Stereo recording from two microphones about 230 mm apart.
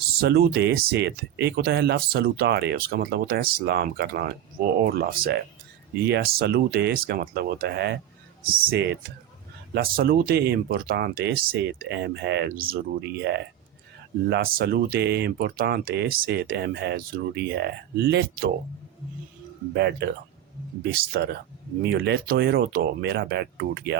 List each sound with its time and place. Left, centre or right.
0.2 s speech: right
19.7 s speech: right